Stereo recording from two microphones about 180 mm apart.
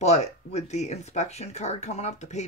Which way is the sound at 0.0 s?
35° left (ahead or behind).